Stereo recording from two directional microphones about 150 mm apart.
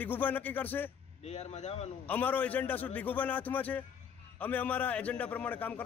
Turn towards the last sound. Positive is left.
turn(degrees=10)  # may be behind; listen again after turning